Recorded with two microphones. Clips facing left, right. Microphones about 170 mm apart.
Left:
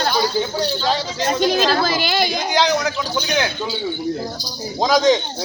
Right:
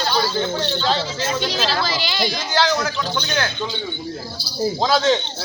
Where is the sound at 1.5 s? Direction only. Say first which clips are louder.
Left 5 dB; 50° left (ahead or behind).